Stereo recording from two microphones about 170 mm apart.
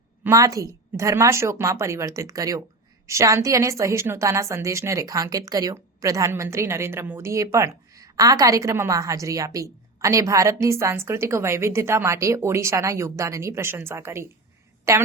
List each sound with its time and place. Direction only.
0.3 s a woman's voice: 20° right (ahead or behind)